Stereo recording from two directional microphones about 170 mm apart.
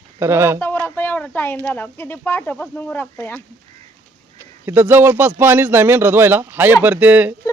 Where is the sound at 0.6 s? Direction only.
15° left (ahead or behind).